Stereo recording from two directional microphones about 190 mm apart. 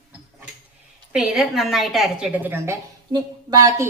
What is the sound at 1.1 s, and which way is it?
A woman's voice, 5° right (ahead or behind).